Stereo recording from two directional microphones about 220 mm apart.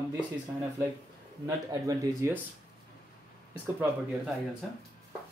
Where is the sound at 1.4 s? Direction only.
15° right (ahead or behind).